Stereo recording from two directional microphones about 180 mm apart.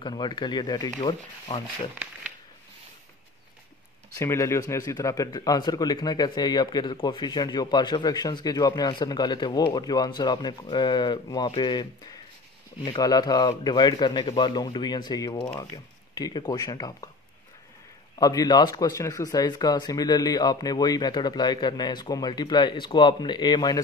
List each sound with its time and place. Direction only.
0.0 s speech: 25° left (ahead or behind)
4.2 s speech: 15° left (ahead or behind)
18.2 s speech: 20° left (ahead or behind)